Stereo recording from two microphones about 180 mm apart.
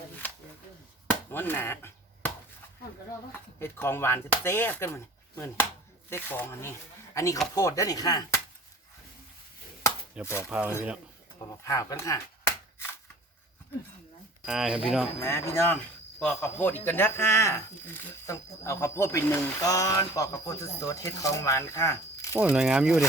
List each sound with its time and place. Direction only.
1.3 s chop: 10° left (ahead or behind)
3.3 s speech: 10° left (ahead or behind)
6.1 s speech: 10° left (ahead or behind)
10.2 s speech: 5° right (ahead or behind)
11.3 s speech: 20° left (ahead or behind)
14.4 s speech: centre (ahead or behind)
15.2 s speech: 15° left (ahead or behind)
22.4 s speech: 5° right (ahead or behind)